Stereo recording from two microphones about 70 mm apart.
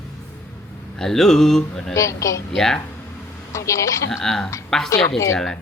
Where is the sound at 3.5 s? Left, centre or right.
Left.